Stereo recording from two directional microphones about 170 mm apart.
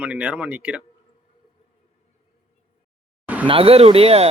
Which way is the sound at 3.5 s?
35° right (ahead or behind).